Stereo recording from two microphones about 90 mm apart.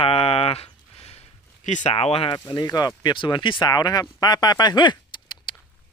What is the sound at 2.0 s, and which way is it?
Speech, 85° left.